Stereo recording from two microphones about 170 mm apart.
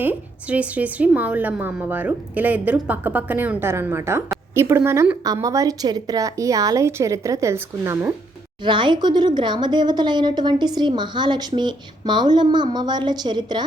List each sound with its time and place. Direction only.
0.0 s a woman's voice: 10° right (ahead or behind)
8.6 s speech: 30° right (ahead or behind)